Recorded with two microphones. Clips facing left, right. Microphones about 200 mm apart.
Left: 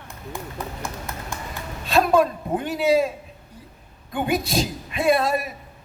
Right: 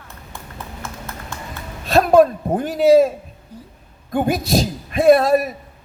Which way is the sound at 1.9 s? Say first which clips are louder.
Right 6 dB; 45° right (ahead or behind).